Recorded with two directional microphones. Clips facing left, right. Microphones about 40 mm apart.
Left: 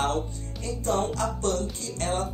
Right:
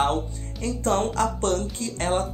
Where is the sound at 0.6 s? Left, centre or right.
Right.